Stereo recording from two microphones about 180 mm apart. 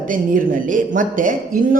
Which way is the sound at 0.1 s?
50° right (ahead or behind).